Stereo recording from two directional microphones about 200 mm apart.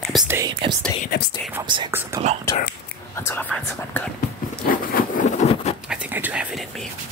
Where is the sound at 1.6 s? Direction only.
20° right (ahead or behind).